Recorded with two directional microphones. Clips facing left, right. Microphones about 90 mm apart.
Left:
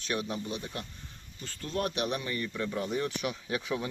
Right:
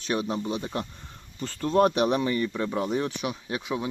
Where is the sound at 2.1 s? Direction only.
85° right.